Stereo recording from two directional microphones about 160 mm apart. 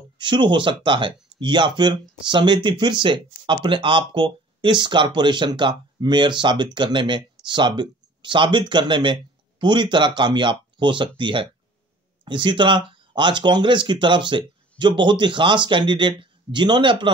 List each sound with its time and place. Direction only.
0.2 s speech: 30° right (ahead or behind)